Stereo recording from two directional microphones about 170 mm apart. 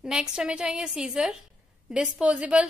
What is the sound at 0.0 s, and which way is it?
A woman's voice, 5° right (ahead or behind).